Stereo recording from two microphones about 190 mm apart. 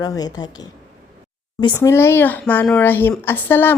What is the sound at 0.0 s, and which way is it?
Speech, 20° left (ahead or behind).